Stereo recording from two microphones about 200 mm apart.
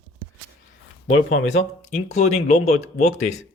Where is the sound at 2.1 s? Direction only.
35° left (ahead or behind).